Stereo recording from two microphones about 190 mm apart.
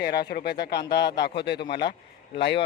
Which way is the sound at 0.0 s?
55° left (ahead or behind).